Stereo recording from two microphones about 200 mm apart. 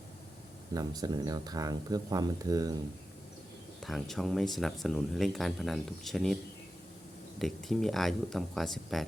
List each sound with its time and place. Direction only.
0.7 s speech: 20° right (ahead or behind)
3.8 s speech: centre (ahead or behind)
7.3 s speech: centre (ahead or behind)